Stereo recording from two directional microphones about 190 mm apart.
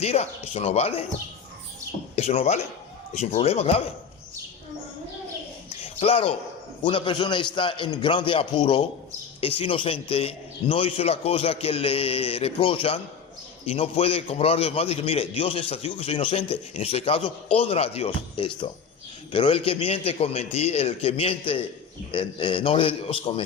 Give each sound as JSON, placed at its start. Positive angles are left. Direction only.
{"t": 0.0, "sound": "a man's voice", "side_deg": 35}
{"t": 2.1, "sound": "a man's voice", "side_deg": 35}
{"t": 5.8, "sound": "a sound", "side_deg": 30}
{"t": 6.8, "sound": "a man's voice", "side_deg": 25}